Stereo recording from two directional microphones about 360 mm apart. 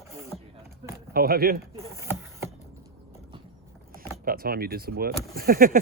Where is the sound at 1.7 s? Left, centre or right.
Centre.